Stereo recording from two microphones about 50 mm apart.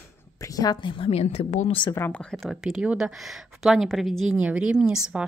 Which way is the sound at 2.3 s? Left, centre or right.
Centre.